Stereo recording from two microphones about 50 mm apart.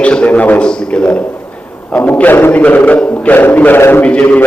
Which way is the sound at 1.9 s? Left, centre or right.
Left.